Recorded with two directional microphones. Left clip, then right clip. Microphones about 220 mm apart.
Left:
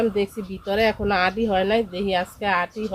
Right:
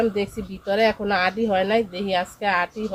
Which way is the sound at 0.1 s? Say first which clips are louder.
Left 2 dB; 10° left (ahead or behind).